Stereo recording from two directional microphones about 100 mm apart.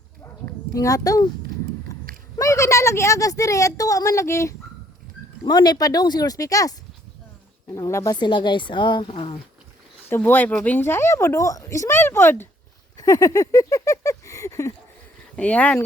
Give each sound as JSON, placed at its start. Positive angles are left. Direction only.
{"t": 0.7, "sound": "a woman's voice", "side_deg": 35}
{"t": 1.9, "sound": "a sound", "side_deg": 35}
{"t": 2.4, "sound": "a woman's voice", "side_deg": 30}
{"t": 5.5, "sound": "a woman's voice", "side_deg": 45}
{"t": 8.1, "sound": "a woman's voice", "side_deg": 50}
{"t": 9.0, "sound": "speech", "side_deg": 65}
{"t": 10.2, "sound": "speech", "side_deg": 20}
{"t": 13.0, "sound": "a sound", "side_deg": 35}
{"t": 15.4, "sound": "speech", "side_deg": 15}